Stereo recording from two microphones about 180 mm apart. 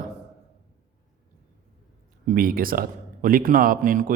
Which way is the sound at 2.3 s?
50° right (ahead or behind).